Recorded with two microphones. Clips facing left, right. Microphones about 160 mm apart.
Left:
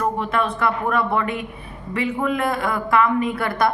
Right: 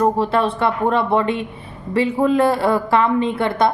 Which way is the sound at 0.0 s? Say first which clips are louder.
Right 5 dB; 30° right (ahead or behind).